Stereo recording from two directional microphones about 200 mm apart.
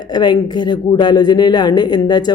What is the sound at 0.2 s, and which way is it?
Speech, 20° left (ahead or behind).